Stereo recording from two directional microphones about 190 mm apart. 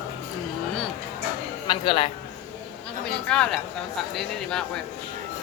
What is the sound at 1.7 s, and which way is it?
Speech, 25° left (ahead or behind).